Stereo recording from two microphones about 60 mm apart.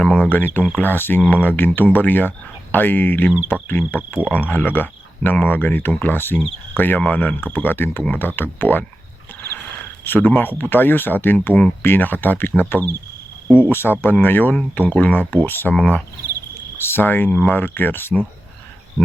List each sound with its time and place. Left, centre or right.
0.0 s a sound: centre
0.3 s speech: left
10.0 s speech: left
15.7 s cricket: centre
16.7 s speech: left